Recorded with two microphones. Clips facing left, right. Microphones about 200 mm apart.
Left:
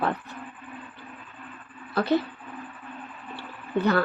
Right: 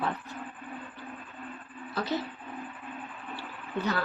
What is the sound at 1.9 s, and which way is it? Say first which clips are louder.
Speech: left 8 dB; 60° left (ahead or behind).